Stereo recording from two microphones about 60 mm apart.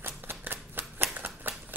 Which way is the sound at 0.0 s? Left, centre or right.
Right.